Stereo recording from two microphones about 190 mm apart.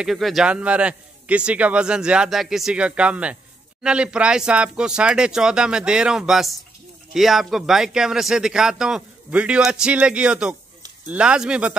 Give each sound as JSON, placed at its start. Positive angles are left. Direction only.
{"t": 0.0, "sound": "a man's voice", "side_deg": 0}